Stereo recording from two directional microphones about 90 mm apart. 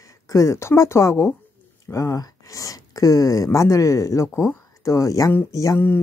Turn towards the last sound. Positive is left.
turn(degrees=25)  # may be behind; listen again after turning